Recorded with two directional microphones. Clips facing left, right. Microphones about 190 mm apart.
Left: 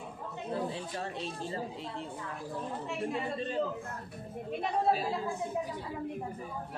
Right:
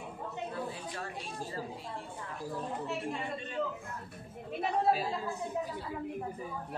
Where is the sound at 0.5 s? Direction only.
25° left (ahead or behind).